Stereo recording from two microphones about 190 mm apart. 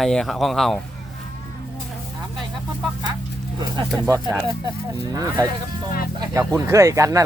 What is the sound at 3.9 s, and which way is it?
Speech, 10° right (ahead or behind).